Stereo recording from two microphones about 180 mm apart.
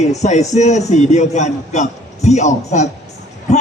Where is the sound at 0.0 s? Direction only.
40° left (ahead or behind).